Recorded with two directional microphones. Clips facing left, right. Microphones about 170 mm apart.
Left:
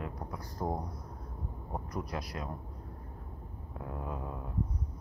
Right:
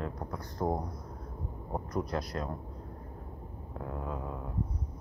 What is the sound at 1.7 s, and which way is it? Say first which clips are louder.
Speech: right 5 dB; 5° left (ahead or behind).